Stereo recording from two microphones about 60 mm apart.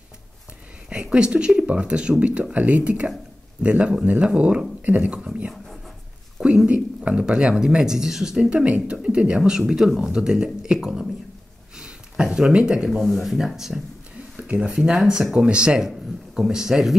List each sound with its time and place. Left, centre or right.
0.8 s speech: centre
13.0 s speech: centre
14.3 s a sound: centre
14.8 s speech: centre